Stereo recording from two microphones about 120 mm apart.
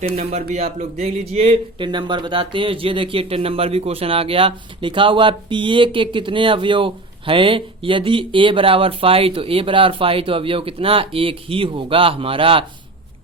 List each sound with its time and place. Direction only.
0.0 s speech: 60° right (ahead or behind)
1.8 s speech: 40° right (ahead or behind)